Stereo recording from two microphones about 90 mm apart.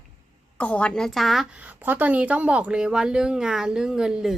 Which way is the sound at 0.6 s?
15° left (ahead or behind).